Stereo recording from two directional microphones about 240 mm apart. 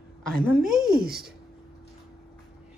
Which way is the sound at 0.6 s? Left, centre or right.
Right.